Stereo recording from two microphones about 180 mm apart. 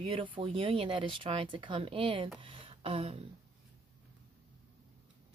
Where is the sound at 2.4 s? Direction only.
30° right (ahead or behind).